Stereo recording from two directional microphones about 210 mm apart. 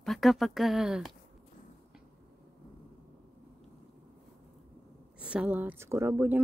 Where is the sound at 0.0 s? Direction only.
Centre (ahead or behind).